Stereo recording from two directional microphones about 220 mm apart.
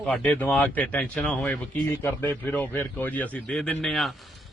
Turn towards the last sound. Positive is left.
turn(degrees=0)  # may be behind; listen again after turning